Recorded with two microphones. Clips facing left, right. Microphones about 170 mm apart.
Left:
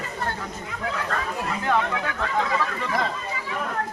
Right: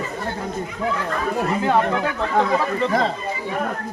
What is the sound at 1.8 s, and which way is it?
Speech, 60° right (ahead or behind).